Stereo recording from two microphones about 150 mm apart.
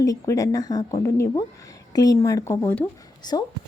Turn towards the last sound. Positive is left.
turn(degrees=25)  # may be behind; listen again after turning